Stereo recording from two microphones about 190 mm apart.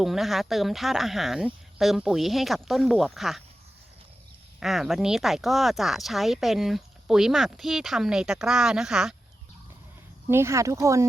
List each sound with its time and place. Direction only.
0.0 s speech: centre (ahead or behind)
4.6 s speech: centre (ahead or behind)
10.2 s speech: 15° right (ahead or behind)